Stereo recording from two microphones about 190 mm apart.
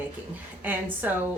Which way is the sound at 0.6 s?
10° right (ahead or behind).